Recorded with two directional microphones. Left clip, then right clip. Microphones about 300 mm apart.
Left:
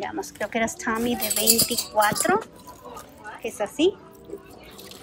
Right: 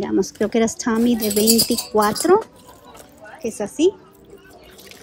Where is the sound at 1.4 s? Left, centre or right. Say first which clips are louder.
Right 3 dB; centre.